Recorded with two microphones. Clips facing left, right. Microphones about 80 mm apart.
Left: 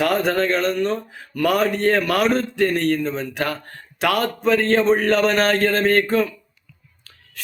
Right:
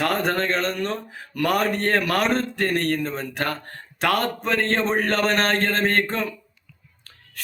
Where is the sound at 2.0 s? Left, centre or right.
Centre.